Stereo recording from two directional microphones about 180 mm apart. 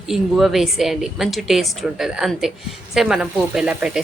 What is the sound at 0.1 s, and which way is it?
A woman's voice, centre (ahead or behind).